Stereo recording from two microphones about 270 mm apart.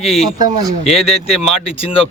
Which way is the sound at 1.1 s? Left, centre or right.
Left.